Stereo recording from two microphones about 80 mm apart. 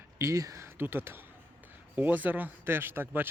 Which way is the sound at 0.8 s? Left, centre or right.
Right.